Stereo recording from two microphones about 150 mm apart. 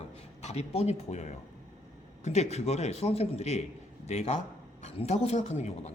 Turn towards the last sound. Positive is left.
turn(degrees=50)  # may be behind; listen again after turning